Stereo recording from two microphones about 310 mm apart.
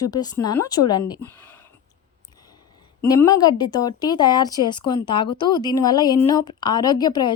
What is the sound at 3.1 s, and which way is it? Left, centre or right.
A woman's voice, centre.